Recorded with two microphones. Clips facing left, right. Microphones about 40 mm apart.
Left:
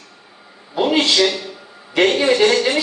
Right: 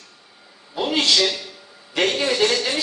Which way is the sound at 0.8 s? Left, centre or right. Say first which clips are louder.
Left 4 dB; left.